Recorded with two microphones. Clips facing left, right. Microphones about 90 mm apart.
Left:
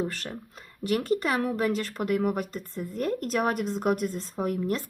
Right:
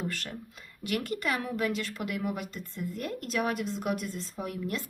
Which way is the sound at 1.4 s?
40° left (ahead or behind).